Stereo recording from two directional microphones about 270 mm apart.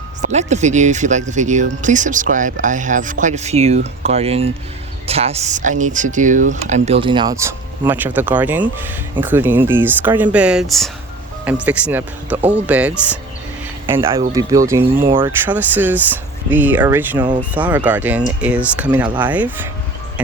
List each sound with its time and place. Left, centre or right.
0.2 s speech: right; by 19.5 s centre